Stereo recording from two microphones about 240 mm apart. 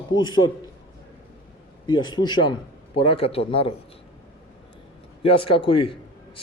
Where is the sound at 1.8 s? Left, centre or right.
Centre.